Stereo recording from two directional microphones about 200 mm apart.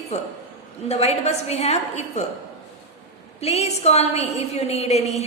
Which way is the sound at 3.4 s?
30° left (ahead or behind).